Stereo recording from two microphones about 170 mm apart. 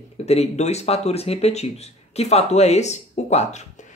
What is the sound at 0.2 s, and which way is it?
Speech, 40° left (ahead or behind).